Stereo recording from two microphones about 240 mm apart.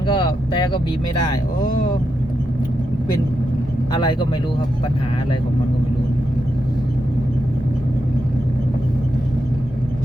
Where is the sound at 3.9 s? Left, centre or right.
Centre.